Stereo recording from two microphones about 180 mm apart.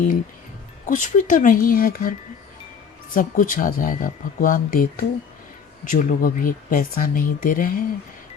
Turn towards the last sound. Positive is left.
turn(degrees=50)  # may be behind; listen again after turning